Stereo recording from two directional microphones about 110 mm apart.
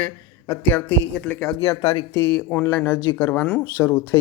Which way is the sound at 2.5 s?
15° left (ahead or behind).